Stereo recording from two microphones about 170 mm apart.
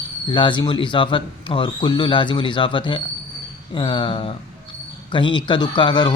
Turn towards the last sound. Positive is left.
turn(degrees=25)  # may be behind; listen again after turning